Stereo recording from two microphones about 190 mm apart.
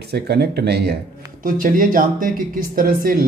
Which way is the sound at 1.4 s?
45° right (ahead or behind).